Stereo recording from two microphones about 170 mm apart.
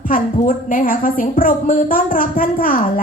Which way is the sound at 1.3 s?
55° left (ahead or behind).